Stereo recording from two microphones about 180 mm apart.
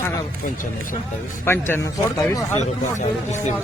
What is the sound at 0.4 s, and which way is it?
Speech, 50° left (ahead or behind).